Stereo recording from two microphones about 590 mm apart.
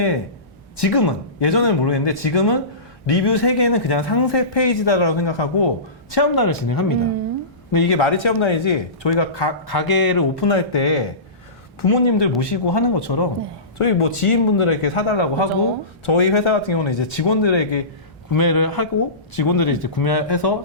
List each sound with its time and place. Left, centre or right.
0.8 s a man's voice: left
6.1 s speech: left
7.9 s a man's voice: left
10.5 s a man's voice: left
13.7 s a man's voice: left
18.3 s speech: left